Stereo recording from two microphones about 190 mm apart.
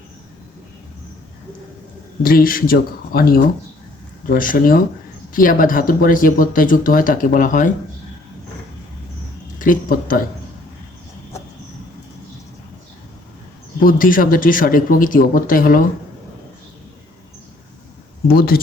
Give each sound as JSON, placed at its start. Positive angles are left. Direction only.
{"t": 2.2, "sound": "speech", "side_deg": 50}
{"t": 9.6, "sound": "speech", "side_deg": 45}
{"t": 13.8, "sound": "speech", "side_deg": 45}
{"t": 18.3, "sound": "speech", "side_deg": 50}